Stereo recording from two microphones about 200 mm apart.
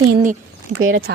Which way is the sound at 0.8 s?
75° right (ahead or behind).